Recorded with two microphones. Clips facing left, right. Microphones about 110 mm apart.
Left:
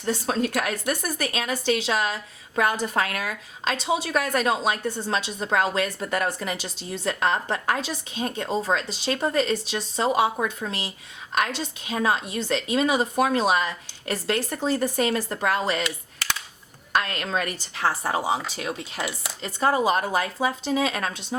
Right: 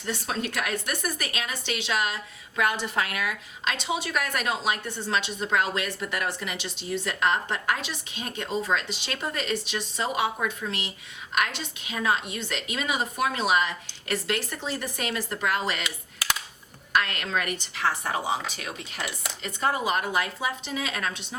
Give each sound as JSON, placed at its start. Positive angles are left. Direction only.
{"t": 0.0, "sound": "a woman's voice", "side_deg": 35}
{"t": 16.1, "sound": "computer keyboard", "side_deg": -5}
{"t": 16.9, "sound": "a woman's voice", "side_deg": 35}